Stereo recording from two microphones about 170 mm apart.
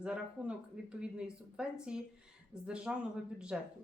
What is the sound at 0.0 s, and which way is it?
Speech, 5° right (ahead or behind).